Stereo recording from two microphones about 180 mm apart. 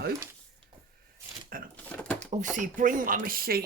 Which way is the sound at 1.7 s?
5° left (ahead or behind).